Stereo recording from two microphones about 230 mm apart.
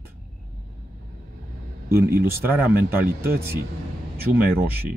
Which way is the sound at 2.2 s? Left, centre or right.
Centre.